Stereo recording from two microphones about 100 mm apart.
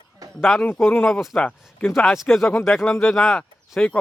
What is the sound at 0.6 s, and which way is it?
Speech, 20° left (ahead or behind).